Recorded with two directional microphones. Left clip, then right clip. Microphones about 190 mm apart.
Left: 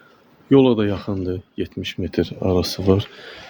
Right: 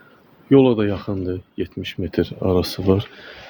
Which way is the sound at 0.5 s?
15° left (ahead or behind).